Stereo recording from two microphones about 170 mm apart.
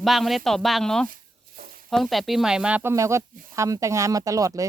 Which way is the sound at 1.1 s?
60° right (ahead or behind).